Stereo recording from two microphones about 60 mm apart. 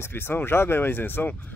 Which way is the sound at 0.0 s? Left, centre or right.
Left.